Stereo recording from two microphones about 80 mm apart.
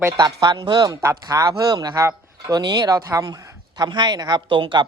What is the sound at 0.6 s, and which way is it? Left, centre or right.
Speech, right.